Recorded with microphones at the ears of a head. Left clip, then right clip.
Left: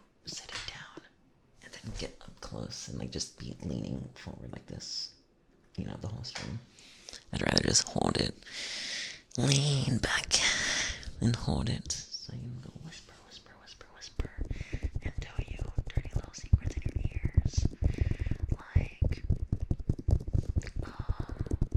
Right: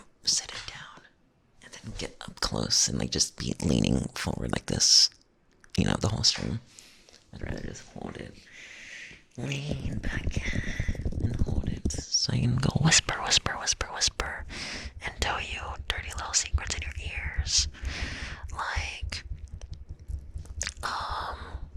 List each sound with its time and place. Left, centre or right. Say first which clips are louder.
2.2 s speech: right 13 dB; right
7.1 s speech: left 11 dB; left
11.0 s whispering: left 1 dB; right
19.3 s clip-clop: left 12 dB; left
20.6 s squish: right 13 dB; right